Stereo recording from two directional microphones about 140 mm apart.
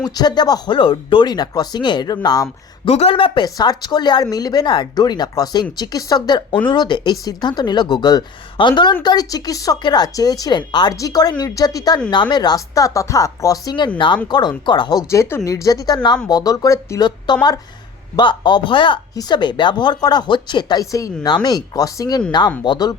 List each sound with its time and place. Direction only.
0.0 s a woman's voice: 30° left (ahead or behind)
2.8 s a woman's voice: 45° left (ahead or behind); by 17.1 s 20° left (ahead or behind)
17.3 s speech: 30° left (ahead or behind)